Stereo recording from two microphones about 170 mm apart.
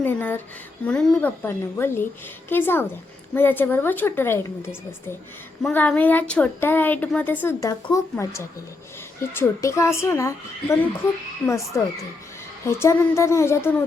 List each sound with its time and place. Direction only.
0.0 s speech: 10° left (ahead or behind)
7.4 s speech: 20° left (ahead or behind)